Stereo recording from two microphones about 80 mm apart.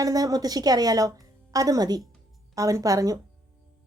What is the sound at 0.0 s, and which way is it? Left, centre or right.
A woman's voice, right.